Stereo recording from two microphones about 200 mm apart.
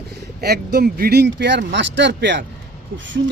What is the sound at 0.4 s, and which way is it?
Speech, 55° right (ahead or behind).